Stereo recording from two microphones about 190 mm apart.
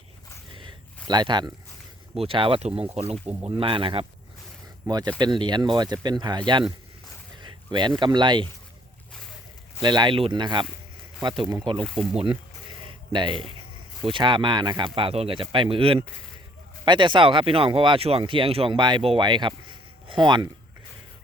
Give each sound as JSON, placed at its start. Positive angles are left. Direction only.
{"t": 0.5, "sound": "a sound", "side_deg": -25}
{"t": 2.1, "sound": "speech", "side_deg": -30}
{"t": 9.8, "sound": "speech", "side_deg": -25}
{"t": 11.8, "sound": "speech", "side_deg": 5}
{"t": 12.1, "sound": "speech", "side_deg": -25}